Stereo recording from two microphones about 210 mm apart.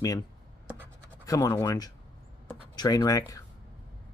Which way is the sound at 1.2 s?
15° left (ahead or behind).